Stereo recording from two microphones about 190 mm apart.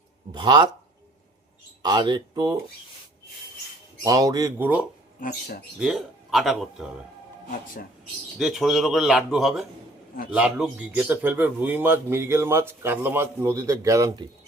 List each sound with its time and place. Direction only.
0.3 s speech: 25° right (ahead or behind)
1.8 s speech: 25° right (ahead or behind)
4.0 s a man's voice: 20° right (ahead or behind); by 6.8 s centre (ahead or behind)
8.4 s a man's voice: centre (ahead or behind); by 14.3 s 20° right (ahead or behind)